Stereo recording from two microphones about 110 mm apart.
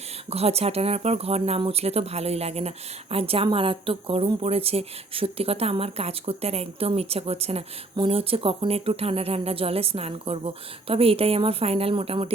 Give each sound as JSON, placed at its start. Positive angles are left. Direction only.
{"t": 0.3, "sound": "speech", "side_deg": -70}
{"t": 7.9, "sound": "speech", "side_deg": -55}